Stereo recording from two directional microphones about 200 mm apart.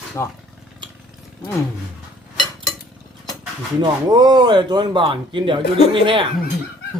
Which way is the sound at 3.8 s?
20° right (ahead or behind).